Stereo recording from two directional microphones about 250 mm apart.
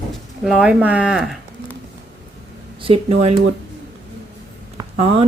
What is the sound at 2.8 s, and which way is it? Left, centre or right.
Speech, right.